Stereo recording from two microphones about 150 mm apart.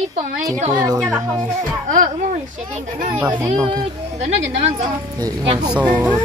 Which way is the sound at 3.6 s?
30° right (ahead or behind).